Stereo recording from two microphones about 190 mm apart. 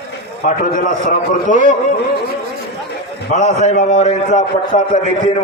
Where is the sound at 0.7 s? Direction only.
45° left (ahead or behind).